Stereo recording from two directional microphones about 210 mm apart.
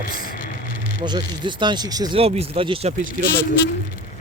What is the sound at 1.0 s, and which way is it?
Speech, 20° right (ahead or behind).